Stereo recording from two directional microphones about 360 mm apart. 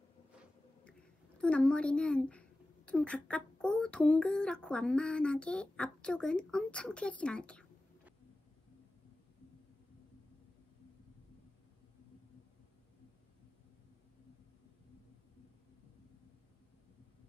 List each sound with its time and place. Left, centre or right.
1.4 s a woman's voice: centre